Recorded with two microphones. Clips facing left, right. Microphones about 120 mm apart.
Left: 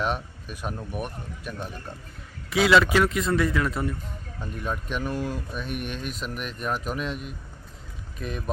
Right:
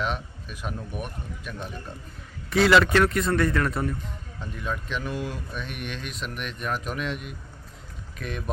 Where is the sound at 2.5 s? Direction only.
Centre (ahead or behind).